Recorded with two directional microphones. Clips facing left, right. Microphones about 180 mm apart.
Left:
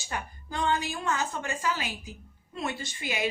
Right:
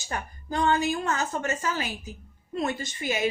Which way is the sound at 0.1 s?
40° right (ahead or behind).